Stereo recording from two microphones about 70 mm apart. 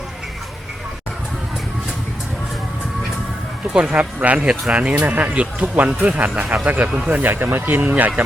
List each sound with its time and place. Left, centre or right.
3.7 s speech: centre